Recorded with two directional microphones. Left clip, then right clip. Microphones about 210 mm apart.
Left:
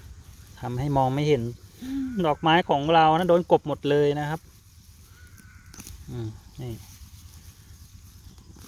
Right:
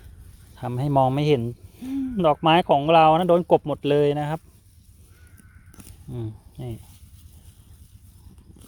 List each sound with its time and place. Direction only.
0.5 s speech: 20° right (ahead or behind)
6.1 s speech: 15° right (ahead or behind)